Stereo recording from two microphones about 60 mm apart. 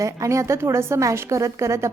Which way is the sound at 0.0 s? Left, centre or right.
Right.